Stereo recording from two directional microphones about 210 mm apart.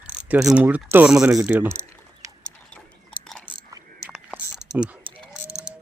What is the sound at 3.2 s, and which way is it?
Biting, centre (ahead or behind).